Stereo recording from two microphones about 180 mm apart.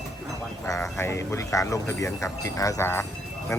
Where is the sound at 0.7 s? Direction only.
15° left (ahead or behind).